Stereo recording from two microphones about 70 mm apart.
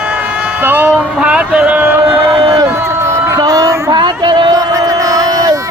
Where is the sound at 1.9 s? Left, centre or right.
Right.